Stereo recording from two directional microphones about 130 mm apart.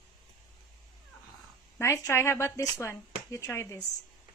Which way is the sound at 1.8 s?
20° left (ahead or behind).